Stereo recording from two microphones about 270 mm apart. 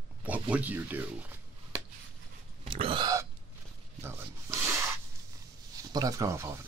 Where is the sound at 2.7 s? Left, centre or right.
Centre.